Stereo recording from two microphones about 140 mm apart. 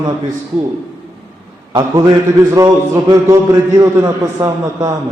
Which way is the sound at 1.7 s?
25° right (ahead or behind).